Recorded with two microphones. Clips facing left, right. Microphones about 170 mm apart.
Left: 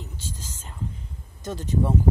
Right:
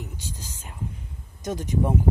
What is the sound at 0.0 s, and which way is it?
Speech, 15° right (ahead or behind).